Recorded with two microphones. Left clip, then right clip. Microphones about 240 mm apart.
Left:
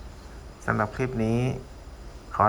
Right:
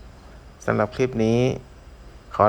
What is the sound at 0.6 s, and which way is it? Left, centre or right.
Speech, right.